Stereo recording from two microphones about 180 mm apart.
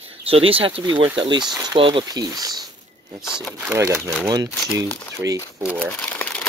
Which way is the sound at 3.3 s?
5° right (ahead or behind).